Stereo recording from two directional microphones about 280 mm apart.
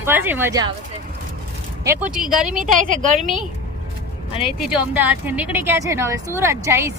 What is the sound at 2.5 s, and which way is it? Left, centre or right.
Speech, right.